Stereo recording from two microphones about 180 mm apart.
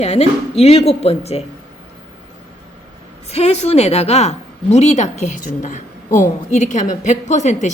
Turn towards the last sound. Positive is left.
turn(degrees=40)  # may be behind; listen again after turning